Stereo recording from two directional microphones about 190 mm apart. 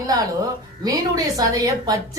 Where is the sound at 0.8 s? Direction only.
20° right (ahead or behind).